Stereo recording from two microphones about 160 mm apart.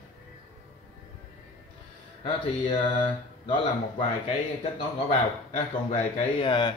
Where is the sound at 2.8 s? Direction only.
30° left (ahead or behind).